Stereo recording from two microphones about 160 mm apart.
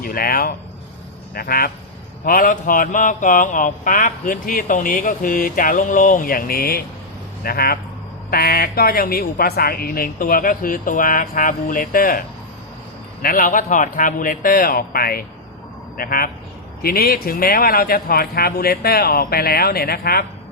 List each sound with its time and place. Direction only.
0.0 s a man's voice: 65° left (ahead or behind)
2.2 s mantra: 60° left (ahead or behind)
7.4 s a man's voice: 70° left (ahead or behind)
8.3 s mantra: 70° left (ahead or behind)
13.2 s mantra: 60° left (ahead or behind)
16.8 s a man's voice: 70° left (ahead or behind)